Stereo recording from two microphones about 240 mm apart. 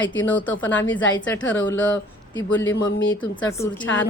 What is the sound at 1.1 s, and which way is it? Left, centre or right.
Speech, centre.